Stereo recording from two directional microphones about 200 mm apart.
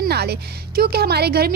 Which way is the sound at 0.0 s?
55° right (ahead or behind).